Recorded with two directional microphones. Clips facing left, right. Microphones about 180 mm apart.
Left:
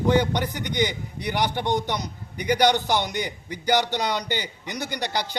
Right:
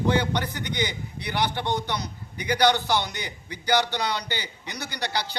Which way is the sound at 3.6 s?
20° left (ahead or behind).